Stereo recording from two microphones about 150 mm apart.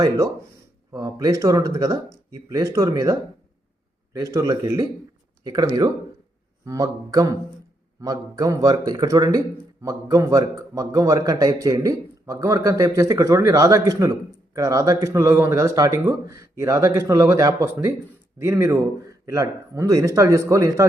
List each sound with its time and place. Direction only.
0.9 s a man's voice: 25° right (ahead or behind)